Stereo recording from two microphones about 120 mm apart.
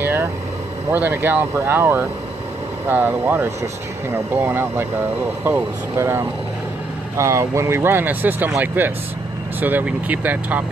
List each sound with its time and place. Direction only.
0.0 s vehicle: 20° right (ahead or behind)
0.9 s speech: 20° right (ahead or behind)